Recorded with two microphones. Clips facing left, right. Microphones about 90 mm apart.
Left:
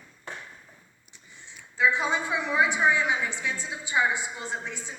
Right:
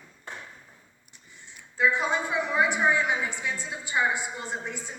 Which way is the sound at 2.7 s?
50° right (ahead or behind).